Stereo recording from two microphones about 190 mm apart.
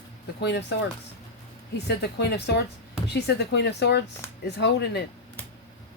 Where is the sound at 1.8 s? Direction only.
60° left (ahead or behind).